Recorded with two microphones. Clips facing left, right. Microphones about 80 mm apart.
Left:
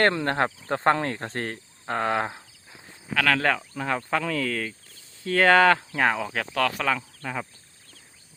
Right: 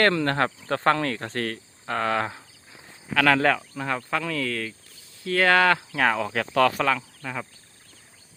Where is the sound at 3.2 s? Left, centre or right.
Centre.